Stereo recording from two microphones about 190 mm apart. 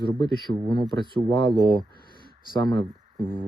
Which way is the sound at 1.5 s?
20° right (ahead or behind).